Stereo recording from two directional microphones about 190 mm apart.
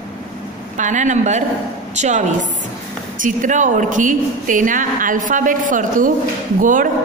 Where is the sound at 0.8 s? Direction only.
40° right (ahead or behind).